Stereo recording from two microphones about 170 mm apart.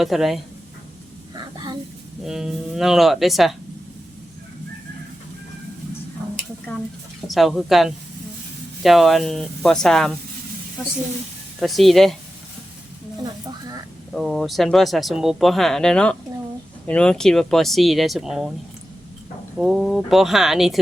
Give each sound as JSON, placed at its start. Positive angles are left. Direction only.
{"t": 0.0, "sound": "speech", "side_deg": 0}
{"t": 1.5, "sound": "a sound", "side_deg": -25}
{"t": 2.2, "sound": "speech", "side_deg": 0}
{"t": 7.3, "sound": "speech", "side_deg": 0}
{"t": 11.6, "sound": "speech", "side_deg": 0}
{"t": 14.1, "sound": "speech", "side_deg": 0}
{"t": 19.5, "sound": "speech", "side_deg": 0}